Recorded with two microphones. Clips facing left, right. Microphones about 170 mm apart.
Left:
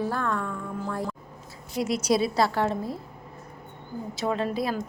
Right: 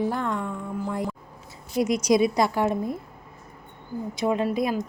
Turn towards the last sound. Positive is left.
turn(degrees=-15)  # may be behind; listen again after turning